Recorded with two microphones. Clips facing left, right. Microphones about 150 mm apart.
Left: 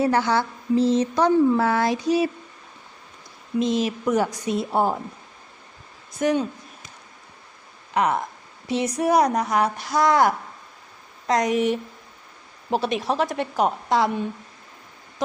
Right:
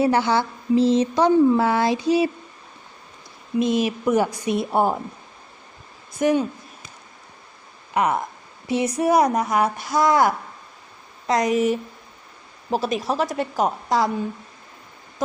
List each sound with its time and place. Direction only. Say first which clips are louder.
0.1 s speech: right 1 dB; 30° right (ahead or behind)
3.6 s speech: right 2 dB; 10° right (ahead or behind)
6.1 s speech: right 2 dB; 10° right (ahead or behind)
7.9 s a woman's voice: right 1 dB; 10° right (ahead or behind)
13.1 s a woman's voice: even; centre (ahead or behind)